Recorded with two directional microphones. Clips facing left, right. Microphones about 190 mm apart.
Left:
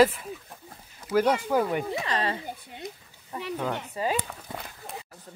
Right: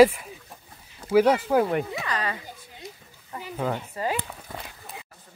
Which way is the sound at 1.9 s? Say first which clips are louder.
Left 2 dB; 30° left (ahead or behind).